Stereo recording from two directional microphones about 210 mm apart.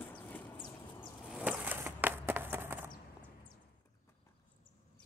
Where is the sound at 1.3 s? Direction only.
5° right (ahead or behind).